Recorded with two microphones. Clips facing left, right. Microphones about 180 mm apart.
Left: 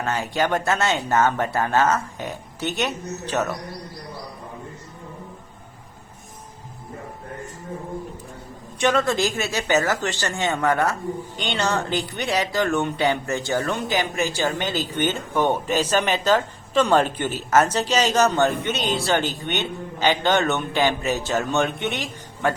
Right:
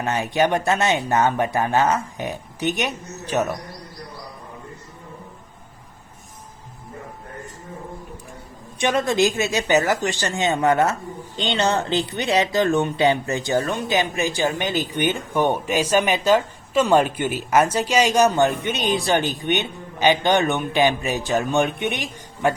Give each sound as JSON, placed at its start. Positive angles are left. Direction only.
{"t": 0.0, "sound": "speech", "side_deg": -20}
{"t": 8.8, "sound": "speech", "side_deg": -15}